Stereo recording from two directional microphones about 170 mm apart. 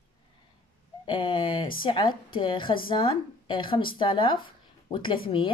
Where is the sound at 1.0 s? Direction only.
30° left (ahead or behind).